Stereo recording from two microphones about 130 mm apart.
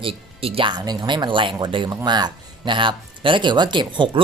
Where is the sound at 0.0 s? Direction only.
45° right (ahead or behind).